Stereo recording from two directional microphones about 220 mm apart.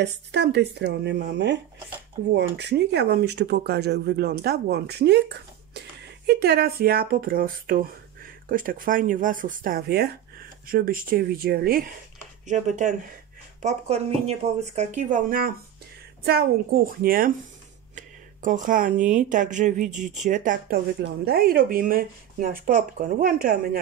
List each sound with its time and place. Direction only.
0.0 s speech: 50° right (ahead or behind)
12.4 s speech: 35° right (ahead or behind)